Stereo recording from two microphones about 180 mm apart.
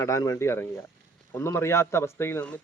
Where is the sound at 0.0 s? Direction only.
20° left (ahead or behind).